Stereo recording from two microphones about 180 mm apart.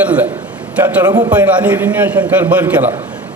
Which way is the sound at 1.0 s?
20° right (ahead or behind).